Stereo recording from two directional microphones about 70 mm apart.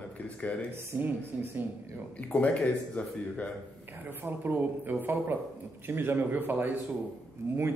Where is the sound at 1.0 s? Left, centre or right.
Right.